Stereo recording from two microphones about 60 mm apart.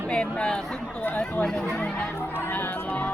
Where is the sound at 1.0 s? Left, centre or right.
Left.